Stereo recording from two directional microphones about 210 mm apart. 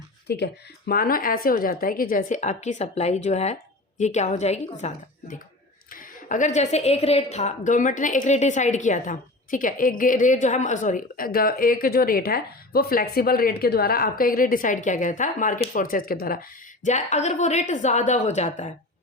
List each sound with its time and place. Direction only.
0.3 s a woman's voice: 50° left (ahead or behind); by 4.9 s 30° left (ahead or behind)
5.9 s a woman's voice: 40° left (ahead or behind)
16.8 s a woman's voice: 35° left (ahead or behind)